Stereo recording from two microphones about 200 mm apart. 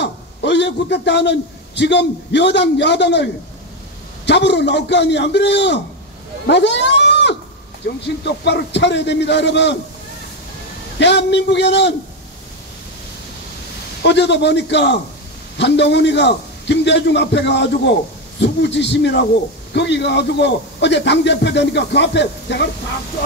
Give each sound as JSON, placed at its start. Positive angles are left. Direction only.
{"t": 0.0, "sound": "a man's voice", "side_deg": 60}
{"t": 4.3, "sound": "a man's voice", "side_deg": 60}
{"t": 6.4, "sound": "a sound", "side_deg": 60}
{"t": 7.8, "sound": "a man's voice", "side_deg": 60}
{"t": 11.0, "sound": "a man's voice", "side_deg": 60}
{"t": 14.0, "sound": "a man's voice", "side_deg": 60}